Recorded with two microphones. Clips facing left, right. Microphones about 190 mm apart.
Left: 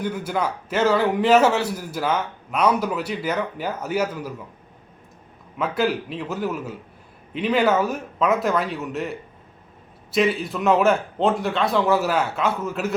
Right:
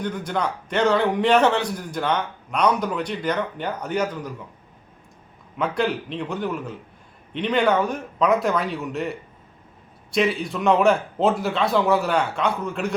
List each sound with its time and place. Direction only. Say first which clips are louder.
0.0 s a man's voice: left 1 dB; 5° left (ahead or behind)
5.5 s a man's voice: left 1 dB; 5° left (ahead or behind)